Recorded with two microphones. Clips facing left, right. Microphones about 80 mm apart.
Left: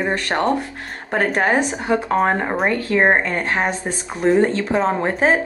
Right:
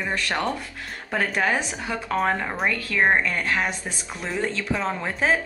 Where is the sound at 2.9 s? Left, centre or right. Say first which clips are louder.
Left 4 dB; left.